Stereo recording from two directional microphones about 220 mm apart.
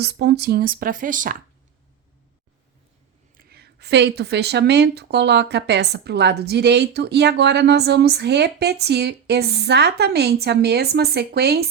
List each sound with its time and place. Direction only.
0.0 s speech: 50° right (ahead or behind)
3.3 s speech: 45° right (ahead or behind)